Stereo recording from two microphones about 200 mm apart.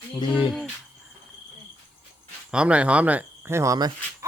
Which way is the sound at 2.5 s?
5° right (ahead or behind).